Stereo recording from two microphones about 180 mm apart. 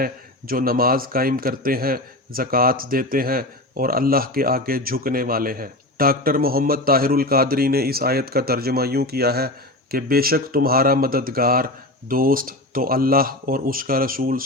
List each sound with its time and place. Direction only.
0.0 s a man's voice: 55° right (ahead or behind)